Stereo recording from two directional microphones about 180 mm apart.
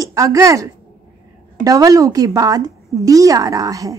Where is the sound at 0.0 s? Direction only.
20° right (ahead or behind).